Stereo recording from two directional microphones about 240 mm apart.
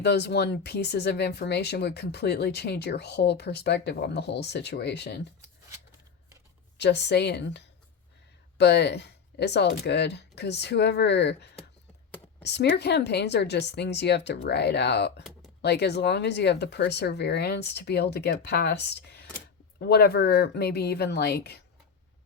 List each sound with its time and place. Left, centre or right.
0.0 s speech: left
6.7 s speech: left